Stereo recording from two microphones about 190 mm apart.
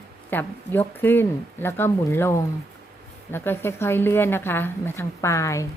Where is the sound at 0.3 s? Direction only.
10° left (ahead or behind).